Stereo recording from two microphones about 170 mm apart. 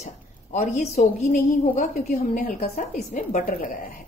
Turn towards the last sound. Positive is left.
turn(degrees=55)  # may be behind; listen again after turning